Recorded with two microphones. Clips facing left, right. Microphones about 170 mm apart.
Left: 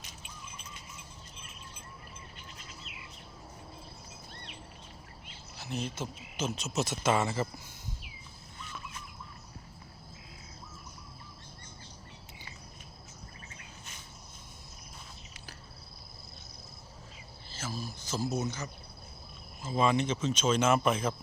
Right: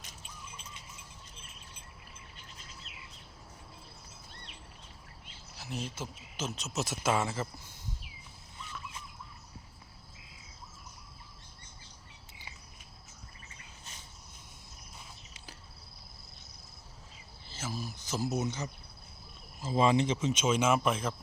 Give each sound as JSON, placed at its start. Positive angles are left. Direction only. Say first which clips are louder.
{"t": 5.5, "sound": "speech", "louder": "left 3 dB", "side_deg": -5}
{"t": 17.5, "sound": "a sound", "louder": "even", "side_deg": -20}
{"t": 19.6, "sound": "speech", "louder": "right 1 dB", "side_deg": -25}
{"t": 20.2, "sound": "speech", "louder": "left 1 dB", "side_deg": -10}